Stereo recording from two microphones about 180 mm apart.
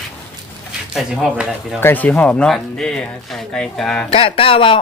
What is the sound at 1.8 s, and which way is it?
Speech, 10° left (ahead or behind).